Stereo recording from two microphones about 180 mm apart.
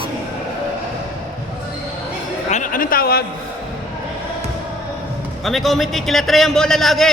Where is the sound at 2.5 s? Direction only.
45° left (ahead or behind).